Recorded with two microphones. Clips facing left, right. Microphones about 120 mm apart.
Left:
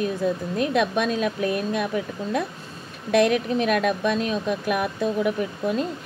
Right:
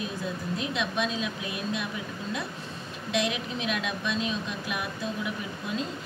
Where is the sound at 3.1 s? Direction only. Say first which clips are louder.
Left 10 dB; 50° left (ahead or behind).